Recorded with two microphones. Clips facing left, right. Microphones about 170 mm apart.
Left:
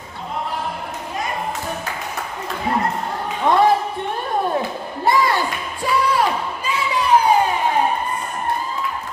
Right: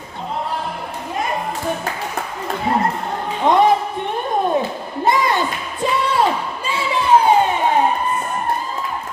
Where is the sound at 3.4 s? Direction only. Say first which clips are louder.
Right 2 dB; 20° right (ahead or behind).